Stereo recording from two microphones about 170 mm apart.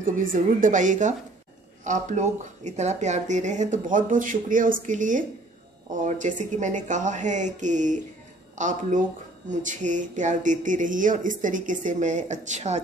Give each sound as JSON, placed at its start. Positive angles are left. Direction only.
{"t": 0.0, "sound": "speech", "side_deg": -55}